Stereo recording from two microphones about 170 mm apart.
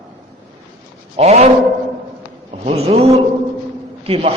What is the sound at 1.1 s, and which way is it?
Speech, 35° right (ahead or behind).